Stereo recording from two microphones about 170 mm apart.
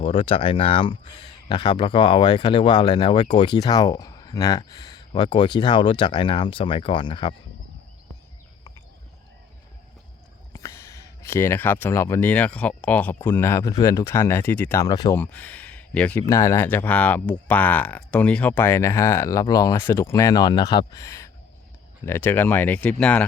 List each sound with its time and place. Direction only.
0.0 s speech: 35° left (ahead or behind)
10.5 s speech: 15° left (ahead or behind)
15.2 s speech: 10° left (ahead or behind)